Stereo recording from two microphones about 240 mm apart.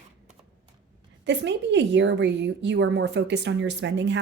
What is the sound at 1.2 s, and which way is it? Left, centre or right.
A woman's voice, right.